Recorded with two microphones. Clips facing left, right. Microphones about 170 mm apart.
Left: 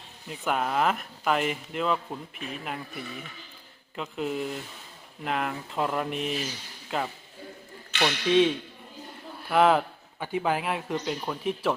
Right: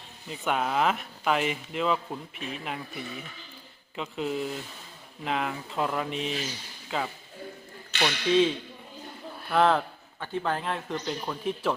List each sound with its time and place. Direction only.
0.3 s speech: centre (ahead or behind)